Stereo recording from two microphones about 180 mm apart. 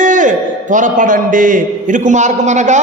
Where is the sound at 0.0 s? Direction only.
45° right (ahead or behind).